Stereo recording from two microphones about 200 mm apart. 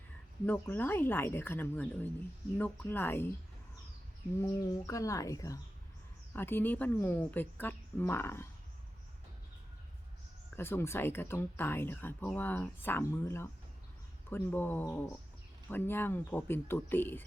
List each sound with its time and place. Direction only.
0.4 s speech: 10° left (ahead or behind)
4.4 s speech: 15° left (ahead or behind)
10.5 s speech: 10° left (ahead or behind)